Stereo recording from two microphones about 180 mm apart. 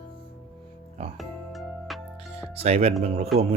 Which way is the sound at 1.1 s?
Centre (ahead or behind).